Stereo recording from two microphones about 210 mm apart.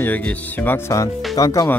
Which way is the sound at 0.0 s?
5° left (ahead or behind).